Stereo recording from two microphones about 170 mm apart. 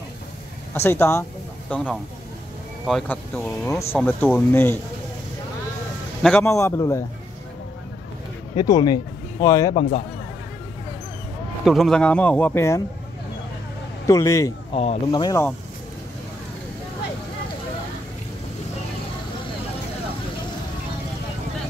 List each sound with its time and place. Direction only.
0.7 s speech: 15° left (ahead or behind)
6.4 s speech: 20° left (ahead or behind)
8.5 s speech: 25° left (ahead or behind)
11.6 s speech: centre (ahead or behind)
14.0 s a man's voice: 20° left (ahead or behind)
14.7 s speech: 35° left (ahead or behind)
15.0 s a man's voice: 20° left (ahead or behind)